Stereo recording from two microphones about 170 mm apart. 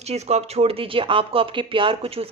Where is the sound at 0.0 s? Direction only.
40° right (ahead or behind).